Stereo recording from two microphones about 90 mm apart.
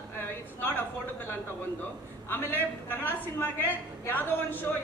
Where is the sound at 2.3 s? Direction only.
20° left (ahead or behind).